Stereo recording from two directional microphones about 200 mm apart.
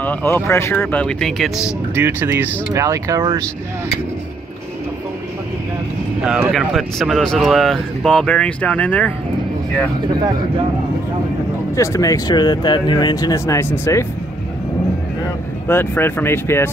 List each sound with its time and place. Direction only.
0.0 s speech: 10° left (ahead or behind); by 3.4 s 15° right (ahead or behind)
6.2 s speech: 5° right (ahead or behind)
11.7 s speech: 15° left (ahead or behind)
15.7 s speech: 10° left (ahead or behind)